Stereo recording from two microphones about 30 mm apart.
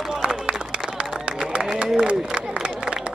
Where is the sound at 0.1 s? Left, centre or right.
Centre.